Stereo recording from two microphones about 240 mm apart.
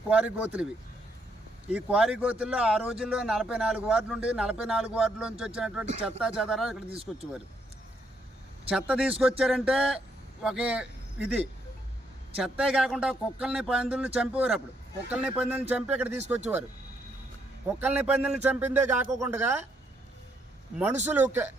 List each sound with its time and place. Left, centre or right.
0.1 s speech: centre
1.7 s speech: centre
5.9 s speech: right
6.1 s speech: centre
6.9 s speech: right
8.7 s speech: centre
12.4 s speech: centre
17.7 s speech: centre
21.0 s speech: centre